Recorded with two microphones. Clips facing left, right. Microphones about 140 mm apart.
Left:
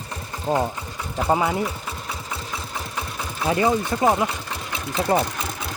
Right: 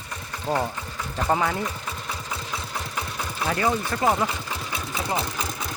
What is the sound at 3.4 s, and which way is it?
Speech, 20° left (ahead or behind).